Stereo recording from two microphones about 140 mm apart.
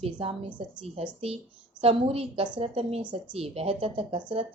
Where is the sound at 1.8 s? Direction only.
45° right (ahead or behind).